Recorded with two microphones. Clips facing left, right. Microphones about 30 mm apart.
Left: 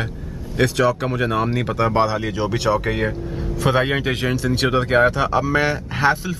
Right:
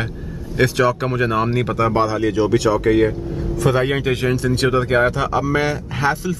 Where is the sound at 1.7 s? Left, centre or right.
Centre.